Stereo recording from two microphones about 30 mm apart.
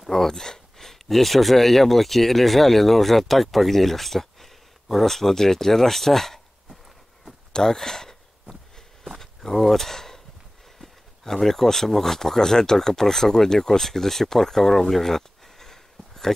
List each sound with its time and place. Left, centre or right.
0.0 s speech: centre
7.5 s a sound: centre
9.6 s speech: centre
11.2 s speech: centre